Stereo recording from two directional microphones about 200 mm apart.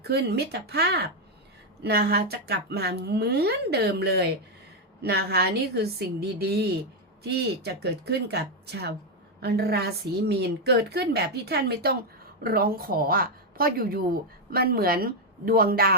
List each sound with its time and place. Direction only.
0.0 s a woman's voice: 55° right (ahead or behind)